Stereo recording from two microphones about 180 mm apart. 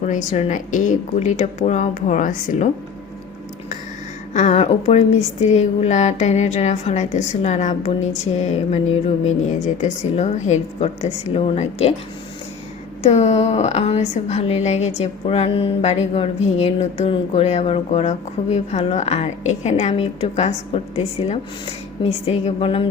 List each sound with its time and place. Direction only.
0.0 s speech: 40° left (ahead or behind)
4.4 s speech: 40° left (ahead or behind)
13.0 s speech: 35° left (ahead or behind)